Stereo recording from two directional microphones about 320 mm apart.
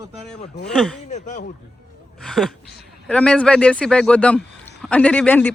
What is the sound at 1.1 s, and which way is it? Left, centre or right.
Speech, left.